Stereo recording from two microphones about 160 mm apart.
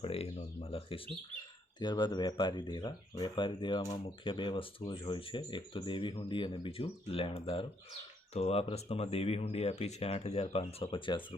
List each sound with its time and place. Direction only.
0.0 s speech: 35° left (ahead or behind)
10.8 s speech: 30° left (ahead or behind)